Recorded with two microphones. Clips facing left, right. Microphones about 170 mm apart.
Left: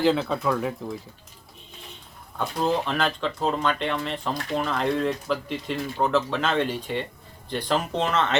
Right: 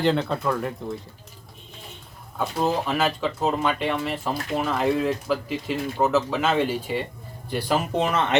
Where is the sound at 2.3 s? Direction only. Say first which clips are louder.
Right 1 dB; 5° right (ahead or behind).